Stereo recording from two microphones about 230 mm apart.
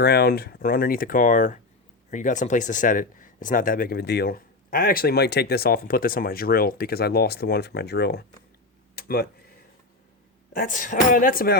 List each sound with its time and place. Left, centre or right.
0.0 s speech: left
9.0 s a sound: left
10.5 s speech: left